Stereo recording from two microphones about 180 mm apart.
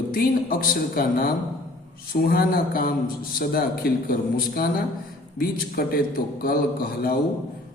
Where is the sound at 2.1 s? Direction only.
55° left (ahead or behind).